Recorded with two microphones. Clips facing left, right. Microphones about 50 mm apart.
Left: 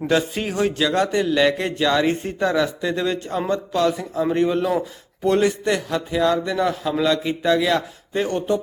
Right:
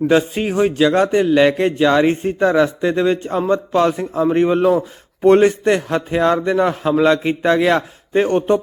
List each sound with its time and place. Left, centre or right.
0.1 s a man's voice: centre
0.9 s a man's voice: right